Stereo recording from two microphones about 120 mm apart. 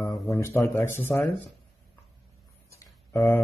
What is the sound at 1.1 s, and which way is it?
Speech, 5° left (ahead or behind).